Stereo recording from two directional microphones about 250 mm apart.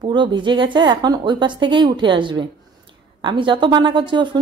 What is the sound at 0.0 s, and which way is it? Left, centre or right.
A woman's voice, centre.